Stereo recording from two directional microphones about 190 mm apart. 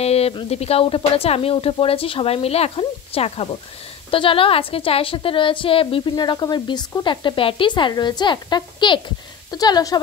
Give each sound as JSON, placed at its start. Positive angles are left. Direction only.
{"t": 0.0, "sound": "a woman's voice", "side_deg": 30}